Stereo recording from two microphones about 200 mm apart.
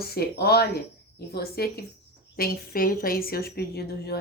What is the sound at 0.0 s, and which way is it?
Speech, 50° left (ahead or behind).